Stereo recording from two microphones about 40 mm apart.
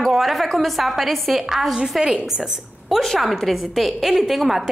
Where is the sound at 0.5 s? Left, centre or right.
Centre.